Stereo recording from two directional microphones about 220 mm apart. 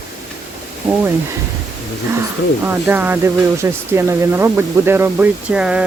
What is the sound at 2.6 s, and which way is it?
Speech, 10° right (ahead or behind).